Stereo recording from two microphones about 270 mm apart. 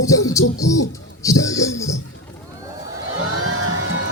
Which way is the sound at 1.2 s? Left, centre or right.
Centre.